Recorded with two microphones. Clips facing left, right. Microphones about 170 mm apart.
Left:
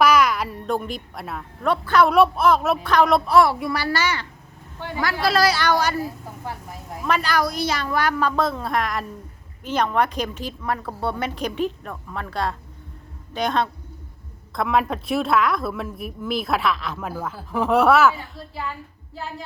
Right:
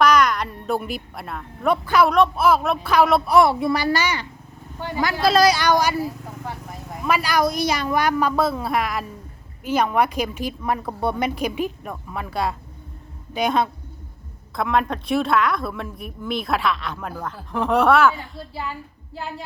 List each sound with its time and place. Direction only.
0.0 s a sound: 5° left (ahead or behind)
0.7 s a woman's voice: 5° right (ahead or behind)
1.6 s a woman's voice: 10° right (ahead or behind)
2.0 s a woman's voice: 5° left (ahead or behind)
3.2 s a woman's voice: 20° right (ahead or behind)
7.0 s a woman's voice: 10° right (ahead or behind)
14.5 s a woman's voice: centre (ahead or behind)